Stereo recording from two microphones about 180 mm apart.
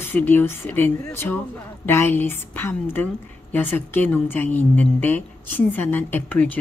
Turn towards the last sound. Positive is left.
turn(degrees=10)  # may be behind; listen again after turning